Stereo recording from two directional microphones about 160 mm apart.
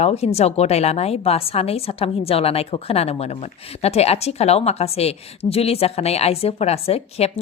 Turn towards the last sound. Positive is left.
turn(degrees=40)  # may be behind; listen again after turning